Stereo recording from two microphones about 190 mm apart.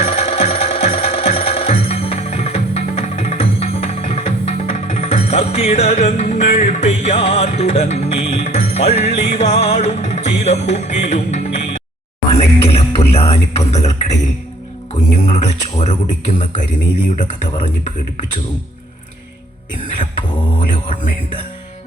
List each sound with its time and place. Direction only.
0.0 s music: 30° left (ahead or behind)
15.3 s speech: 40° left (ahead or behind)
20.6 s speech: 40° left (ahead or behind)